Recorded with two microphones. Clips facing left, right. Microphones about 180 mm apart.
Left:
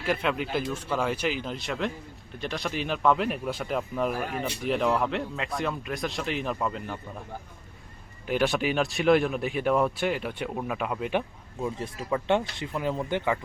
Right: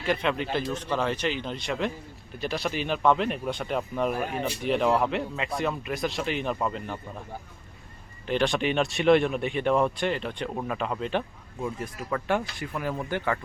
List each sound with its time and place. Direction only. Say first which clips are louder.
0.0 s speech: right 1 dB; 5° left (ahead or behind)
8.3 s speech: even; 5° left (ahead or behind)
12.1 s speech: left 2 dB; 25° left (ahead or behind)